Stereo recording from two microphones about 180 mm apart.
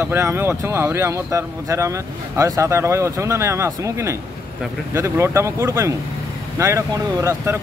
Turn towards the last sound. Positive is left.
turn(degrees=-15)  # may be behind; listen again after turning